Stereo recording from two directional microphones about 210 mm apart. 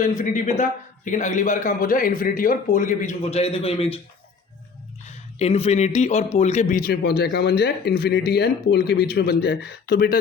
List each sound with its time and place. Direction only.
0.2 s a man's voice: 35° left (ahead or behind)
5.0 s a man's voice: 30° left (ahead or behind); by 10.2 s 50° left (ahead or behind)